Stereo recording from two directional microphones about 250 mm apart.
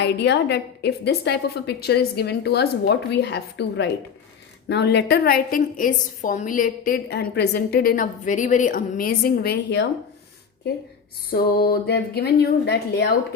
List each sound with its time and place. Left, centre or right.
0.0 s a woman's voice: left
11.3 s a woman's voice: left